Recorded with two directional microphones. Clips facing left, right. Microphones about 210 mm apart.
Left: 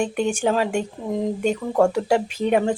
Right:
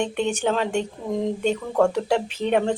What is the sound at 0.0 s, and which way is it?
Speech, 10° left (ahead or behind).